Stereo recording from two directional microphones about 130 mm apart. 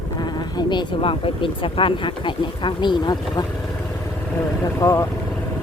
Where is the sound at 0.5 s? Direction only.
35° left (ahead or behind).